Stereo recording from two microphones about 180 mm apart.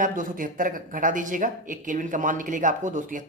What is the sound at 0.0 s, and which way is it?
Speech, 50° right (ahead or behind).